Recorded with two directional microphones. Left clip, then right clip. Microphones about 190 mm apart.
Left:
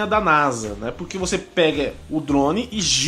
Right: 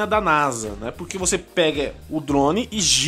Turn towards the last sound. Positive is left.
turn(degrees=-40)  # may be behind; listen again after turning